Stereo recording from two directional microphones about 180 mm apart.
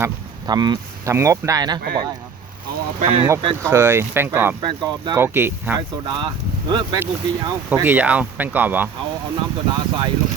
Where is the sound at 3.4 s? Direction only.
15° right (ahead or behind).